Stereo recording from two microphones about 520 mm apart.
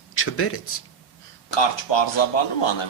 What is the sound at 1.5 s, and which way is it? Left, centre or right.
A man's voice, left.